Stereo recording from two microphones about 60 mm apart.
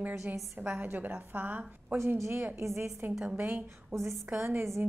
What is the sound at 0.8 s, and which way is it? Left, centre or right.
A woman's voice, right.